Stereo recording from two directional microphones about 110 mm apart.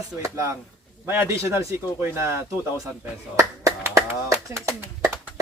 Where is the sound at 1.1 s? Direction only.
25° right (ahead or behind).